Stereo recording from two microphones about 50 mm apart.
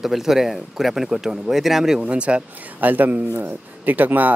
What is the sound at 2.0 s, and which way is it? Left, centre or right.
Speech, right.